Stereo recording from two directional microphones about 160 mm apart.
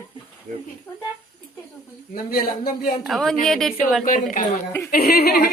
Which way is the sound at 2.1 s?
65° left (ahead or behind).